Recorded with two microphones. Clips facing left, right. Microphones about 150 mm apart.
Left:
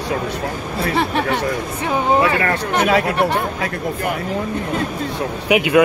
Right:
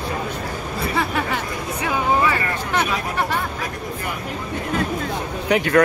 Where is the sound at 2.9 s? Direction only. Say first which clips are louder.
Left 9 dB; 85° left.